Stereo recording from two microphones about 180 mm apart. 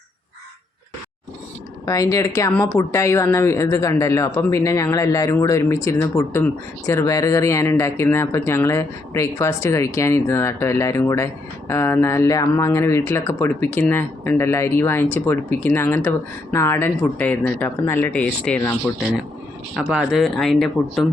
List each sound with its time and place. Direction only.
1.8 s speech: 20° left (ahead or behind)
19.7 s speech: centre (ahead or behind)